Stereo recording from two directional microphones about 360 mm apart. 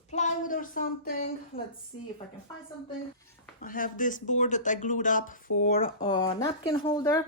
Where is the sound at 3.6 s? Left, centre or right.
Left.